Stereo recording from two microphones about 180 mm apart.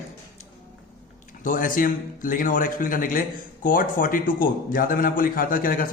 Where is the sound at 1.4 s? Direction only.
50° left (ahead or behind).